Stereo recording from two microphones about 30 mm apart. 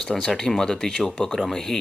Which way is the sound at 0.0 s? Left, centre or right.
Centre.